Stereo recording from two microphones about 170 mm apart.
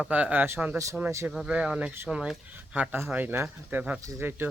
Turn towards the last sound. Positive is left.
turn(degrees=-10)  # may be behind; listen again after turning